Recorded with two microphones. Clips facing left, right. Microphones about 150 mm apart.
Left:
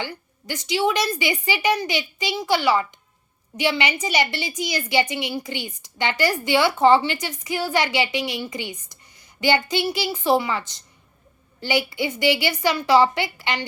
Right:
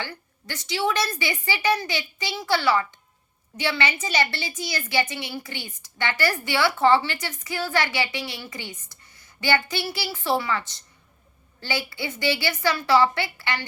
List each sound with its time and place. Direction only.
0.0 s a woman's voice: 15° left (ahead or behind)